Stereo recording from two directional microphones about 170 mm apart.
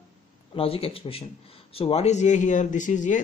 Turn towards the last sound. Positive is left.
turn(degrees=45)  # may be behind; listen again after turning